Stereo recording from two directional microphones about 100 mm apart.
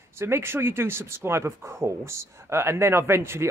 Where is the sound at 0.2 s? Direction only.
25° right (ahead or behind).